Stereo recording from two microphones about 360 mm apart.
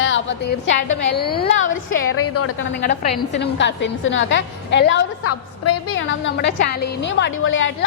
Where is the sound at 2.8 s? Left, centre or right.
Left.